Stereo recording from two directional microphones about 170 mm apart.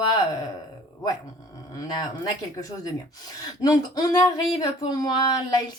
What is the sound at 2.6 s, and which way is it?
Speech, 20° left (ahead or behind).